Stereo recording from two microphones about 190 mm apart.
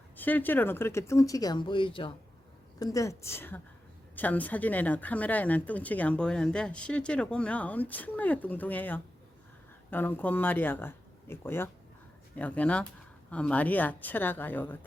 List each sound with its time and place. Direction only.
0.2 s speech: 10° left (ahead or behind)